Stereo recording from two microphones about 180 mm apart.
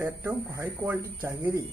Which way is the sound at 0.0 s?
10° right (ahead or behind).